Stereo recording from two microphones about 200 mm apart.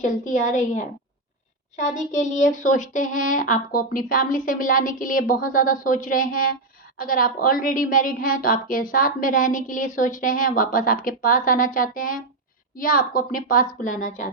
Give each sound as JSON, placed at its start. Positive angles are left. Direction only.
{"t": 0.0, "sound": "a woman's voice", "side_deg": 40}